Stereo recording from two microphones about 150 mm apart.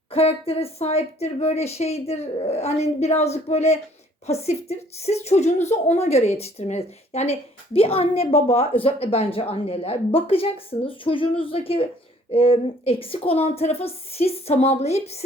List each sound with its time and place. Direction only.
0.1 s a woman's voice: 40° left (ahead or behind)